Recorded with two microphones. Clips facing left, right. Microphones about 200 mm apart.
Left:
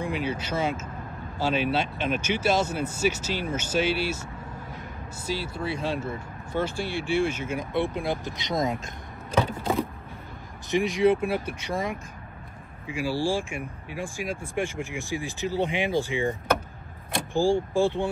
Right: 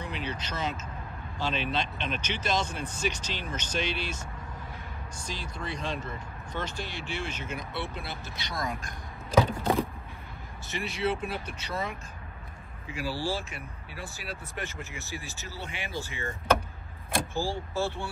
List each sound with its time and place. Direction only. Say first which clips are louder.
0.0 s speech: left 7 dB; 10° left (ahead or behind)
10.7 s speech: left 9 dB; 15° left (ahead or behind)
12.9 s speech: left 6 dB; 10° left (ahead or behind)